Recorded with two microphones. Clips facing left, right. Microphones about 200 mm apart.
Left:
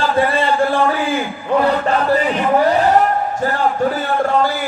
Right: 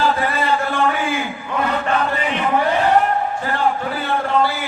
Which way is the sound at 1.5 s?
35° left (ahead or behind).